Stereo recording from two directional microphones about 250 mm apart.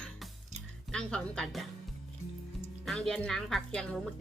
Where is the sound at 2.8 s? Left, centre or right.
Centre.